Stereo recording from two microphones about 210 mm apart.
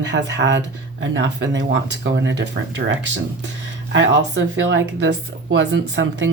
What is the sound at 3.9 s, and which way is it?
Speech, 60° right (ahead or behind).